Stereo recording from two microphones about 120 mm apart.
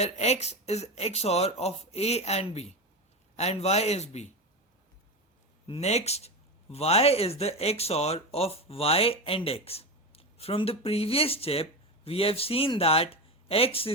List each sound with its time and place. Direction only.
0.0 s speech: 65° left (ahead or behind)
5.6 s speech: 60° left (ahead or behind)